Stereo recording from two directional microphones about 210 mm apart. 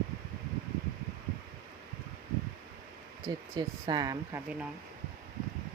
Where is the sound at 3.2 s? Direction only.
20° right (ahead or behind).